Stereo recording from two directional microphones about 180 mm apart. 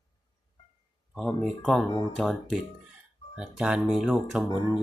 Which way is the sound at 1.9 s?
20° left (ahead or behind).